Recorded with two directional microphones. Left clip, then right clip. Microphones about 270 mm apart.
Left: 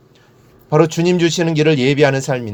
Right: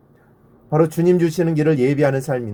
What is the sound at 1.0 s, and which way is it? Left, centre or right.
A man's voice, left.